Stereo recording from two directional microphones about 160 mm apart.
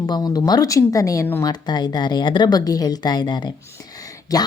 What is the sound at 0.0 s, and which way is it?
Speech, 25° left (ahead or behind).